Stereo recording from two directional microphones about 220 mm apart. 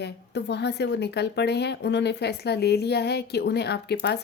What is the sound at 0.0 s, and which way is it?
Speech, 50° left (ahead or behind).